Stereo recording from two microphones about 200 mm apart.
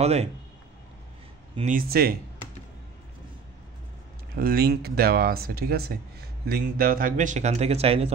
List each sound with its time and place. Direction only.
0.0 s a man's voice: 30° right (ahead or behind)
1.5 s speech: 40° right (ahead or behind)
4.4 s speech: 50° right (ahead or behind); by 8.1 s 30° right (ahead or behind)